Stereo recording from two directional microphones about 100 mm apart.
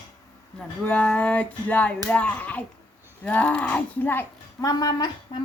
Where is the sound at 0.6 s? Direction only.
10° left (ahead or behind).